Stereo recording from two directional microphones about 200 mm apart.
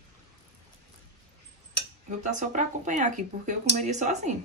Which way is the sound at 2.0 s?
35° right (ahead or behind).